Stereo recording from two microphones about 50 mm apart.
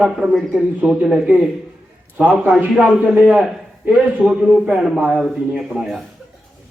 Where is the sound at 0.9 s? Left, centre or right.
Centre.